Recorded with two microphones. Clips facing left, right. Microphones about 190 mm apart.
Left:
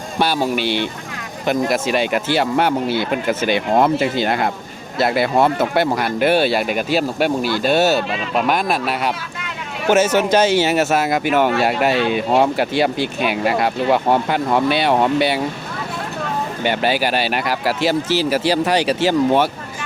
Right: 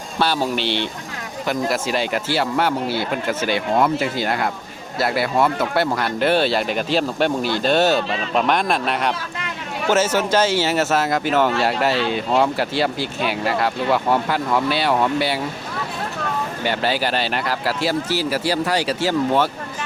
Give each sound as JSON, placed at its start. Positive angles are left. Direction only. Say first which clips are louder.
{"t": 0.2, "sound": "speech", "louder": "left 2 dB", "side_deg": 15}
{"t": 9.9, "sound": "speech", "louder": "left 4 dB", "side_deg": 15}
{"t": 16.6, "sound": "speech", "louder": "left 3 dB", "side_deg": 15}